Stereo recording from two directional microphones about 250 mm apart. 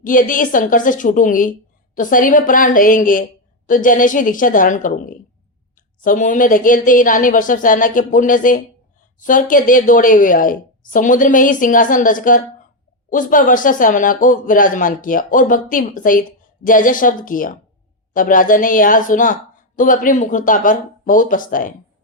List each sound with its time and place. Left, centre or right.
0.0 s a woman's voice: left